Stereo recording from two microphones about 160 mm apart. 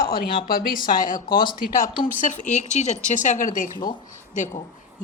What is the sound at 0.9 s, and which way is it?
A woman's voice, 60° left (ahead or behind).